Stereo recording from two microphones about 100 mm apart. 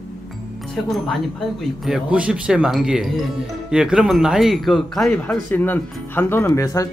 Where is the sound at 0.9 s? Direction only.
Centre (ahead or behind).